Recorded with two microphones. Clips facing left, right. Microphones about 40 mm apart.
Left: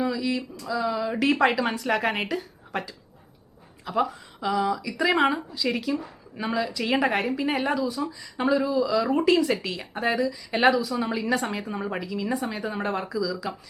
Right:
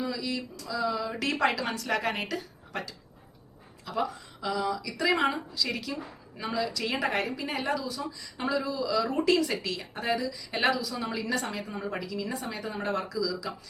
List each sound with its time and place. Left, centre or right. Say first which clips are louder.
0.0 s speech: left 6 dB; centre